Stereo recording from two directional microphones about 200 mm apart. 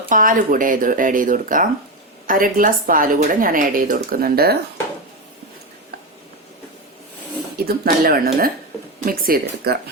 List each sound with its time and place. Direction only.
0.1 s a woman's voice: 45° right (ahead or behind)
7.6 s a woman's voice: 50° right (ahead or behind)